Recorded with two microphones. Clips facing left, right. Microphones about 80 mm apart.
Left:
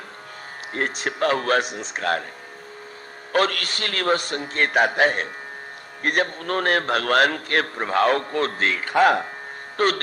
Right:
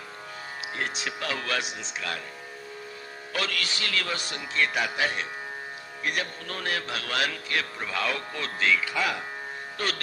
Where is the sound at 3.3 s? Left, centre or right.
Left.